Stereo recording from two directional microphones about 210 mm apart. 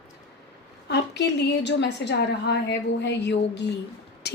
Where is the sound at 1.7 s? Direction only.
55° left (ahead or behind).